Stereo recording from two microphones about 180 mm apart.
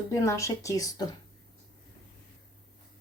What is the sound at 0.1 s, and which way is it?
Speech, 15° left (ahead or behind).